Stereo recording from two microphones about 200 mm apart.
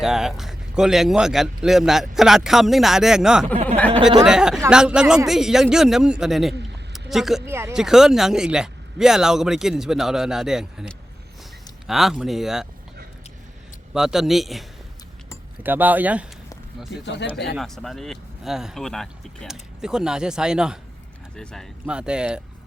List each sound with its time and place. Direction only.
0.0 s speech: centre (ahead or behind)
7.4 s speech: 10° right (ahead or behind)
13.9 s speech: centre (ahead or behind)
15.6 s speech: 10° right (ahead or behind)
16.9 s speech: 65° left (ahead or behind)
17.6 s speech: centre (ahead or behind)